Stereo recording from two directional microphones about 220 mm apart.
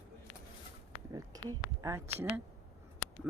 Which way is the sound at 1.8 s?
10° right (ahead or behind).